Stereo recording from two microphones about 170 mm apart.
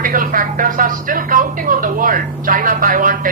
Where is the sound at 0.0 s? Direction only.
55° right (ahead or behind).